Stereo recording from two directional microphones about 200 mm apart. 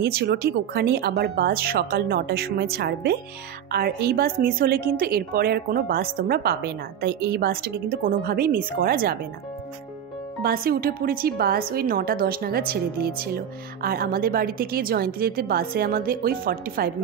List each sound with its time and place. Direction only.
0.0 s a woman's voice: 55° right (ahead or behind)
10.4 s a woman's voice: 50° right (ahead or behind)